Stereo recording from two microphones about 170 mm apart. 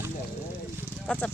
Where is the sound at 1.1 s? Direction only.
5° left (ahead or behind).